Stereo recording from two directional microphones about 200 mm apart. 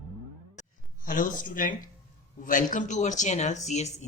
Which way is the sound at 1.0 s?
45° left (ahead or behind).